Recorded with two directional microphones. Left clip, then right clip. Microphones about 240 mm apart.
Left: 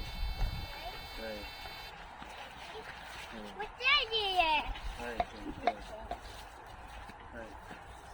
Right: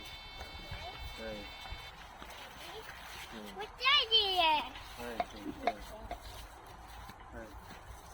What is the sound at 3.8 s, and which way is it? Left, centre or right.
Speech, right.